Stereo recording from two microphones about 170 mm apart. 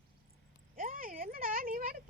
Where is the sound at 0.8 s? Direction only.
55° right (ahead or behind).